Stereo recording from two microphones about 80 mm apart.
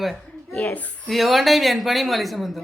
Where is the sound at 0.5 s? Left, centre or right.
Left.